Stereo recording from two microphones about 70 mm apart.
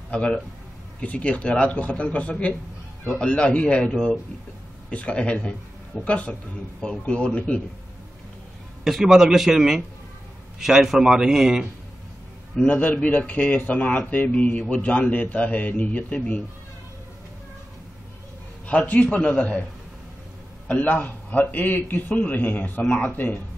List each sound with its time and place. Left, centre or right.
0.1 s a man's voice: centre
8.8 s a man's voice: centre
12.6 s a man's voice: left
18.7 s a man's voice: left
20.6 s a man's voice: left